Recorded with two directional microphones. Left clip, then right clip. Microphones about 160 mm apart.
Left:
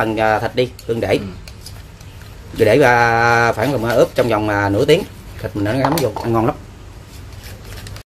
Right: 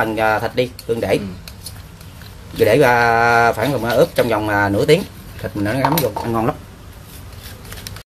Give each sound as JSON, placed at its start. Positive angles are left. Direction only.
{"t": 0.0, "sound": "speech", "side_deg": 15}
{"t": 2.6, "sound": "speech", "side_deg": 15}